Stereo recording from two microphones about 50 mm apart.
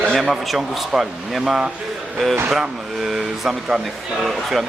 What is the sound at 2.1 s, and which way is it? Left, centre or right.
Speech, centre.